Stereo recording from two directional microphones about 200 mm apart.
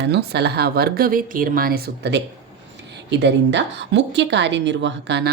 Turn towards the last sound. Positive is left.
turn(degrees=-60)  # may be behind; listen again after turning